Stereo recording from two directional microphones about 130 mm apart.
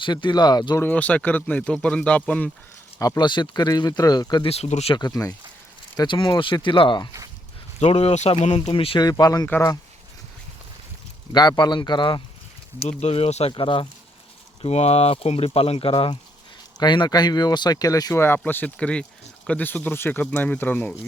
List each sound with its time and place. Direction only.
0.0 s speech: 35° left (ahead or behind)
0.8 s speech: 10° left (ahead or behind)
3.0 s speech: 30° left (ahead or behind)
4.4 s speech: 55° left (ahead or behind)
4.9 s speech: 30° left (ahead or behind)
7.8 s speech: 55° left (ahead or behind)
8.7 s speech: 45° left (ahead or behind)
9.0 s speech: 30° left (ahead or behind)
11.3 s speech: 35° left (ahead or behind)
12.9 s speech: 55° left (ahead or behind)
13.5 s speech: 40° left (ahead or behind)
14.6 s speech: 55° left (ahead or behind); by 20.9 s 15° left (ahead or behind)